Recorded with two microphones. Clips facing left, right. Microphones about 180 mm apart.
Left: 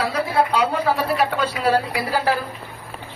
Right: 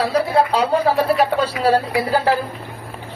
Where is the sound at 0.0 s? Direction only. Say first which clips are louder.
Right 4 dB; 30° right (ahead or behind).